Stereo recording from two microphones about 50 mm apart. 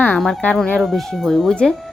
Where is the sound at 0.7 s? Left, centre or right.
Centre.